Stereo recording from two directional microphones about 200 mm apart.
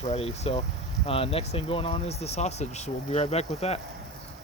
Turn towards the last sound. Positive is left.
turn(degrees=30)  # may be behind; listen again after turning